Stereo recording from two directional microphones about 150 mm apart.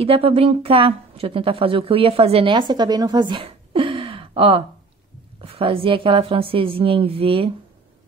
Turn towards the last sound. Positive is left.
turn(degrees=-40)  # may be behind; listen again after turning